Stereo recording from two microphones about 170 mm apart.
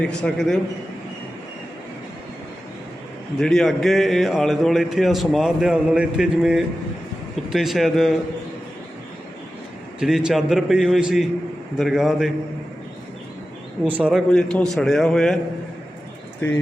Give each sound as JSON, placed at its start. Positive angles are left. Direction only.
{"t": 0.0, "sound": "a man's voice", "side_deg": 5}
{"t": 3.3, "sound": "a man's voice", "side_deg": 5}
{"t": 10.0, "sound": "a man's voice", "side_deg": -5}
{"t": 13.8, "sound": "a man's voice", "side_deg": -10}